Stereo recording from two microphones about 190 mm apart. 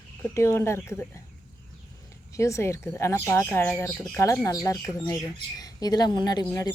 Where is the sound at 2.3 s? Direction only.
15° left (ahead or behind).